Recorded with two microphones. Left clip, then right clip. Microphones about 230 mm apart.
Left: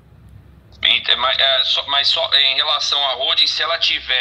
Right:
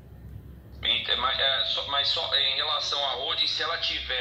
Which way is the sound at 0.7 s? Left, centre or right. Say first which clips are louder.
Left 10 dB; left.